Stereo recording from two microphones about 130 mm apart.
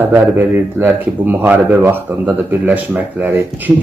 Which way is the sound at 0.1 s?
15° right (ahead or behind).